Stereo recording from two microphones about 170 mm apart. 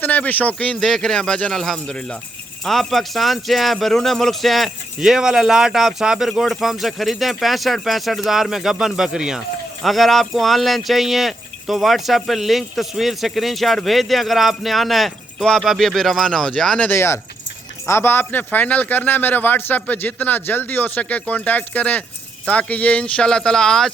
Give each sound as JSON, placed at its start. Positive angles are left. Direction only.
{"t": 0.0, "sound": "speech", "side_deg": 10}